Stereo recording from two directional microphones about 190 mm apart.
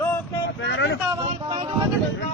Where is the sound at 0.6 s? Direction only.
70° left (ahead or behind).